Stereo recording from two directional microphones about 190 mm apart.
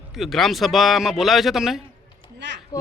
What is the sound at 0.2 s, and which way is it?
A man's voice, centre (ahead or behind).